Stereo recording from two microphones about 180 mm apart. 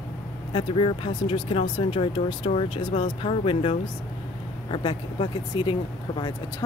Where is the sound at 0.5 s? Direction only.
25° left (ahead or behind).